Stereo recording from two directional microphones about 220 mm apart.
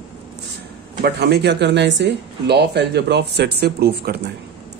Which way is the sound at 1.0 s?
50° right (ahead or behind).